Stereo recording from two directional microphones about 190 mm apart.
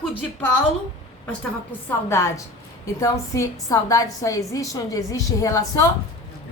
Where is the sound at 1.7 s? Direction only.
15° left (ahead or behind).